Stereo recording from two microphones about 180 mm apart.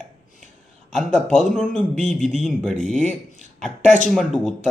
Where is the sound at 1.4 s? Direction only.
Centre (ahead or behind).